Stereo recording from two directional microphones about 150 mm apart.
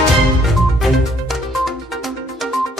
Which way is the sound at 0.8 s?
Centre (ahead or behind).